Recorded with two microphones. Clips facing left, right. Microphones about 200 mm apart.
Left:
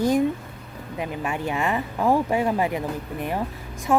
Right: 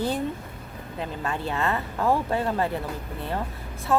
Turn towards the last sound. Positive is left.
turn(degrees=15)  # may be behind; listen again after turning